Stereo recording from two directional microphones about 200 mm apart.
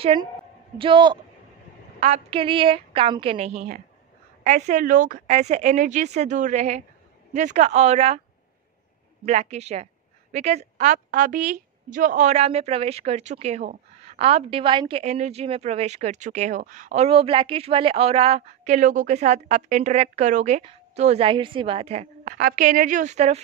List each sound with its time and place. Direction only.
0.0 s a woman's voice: 25° right (ahead or behind)
9.2 s a woman's voice: 35° right (ahead or behind)
22.4 s a woman's voice: 45° right (ahead or behind)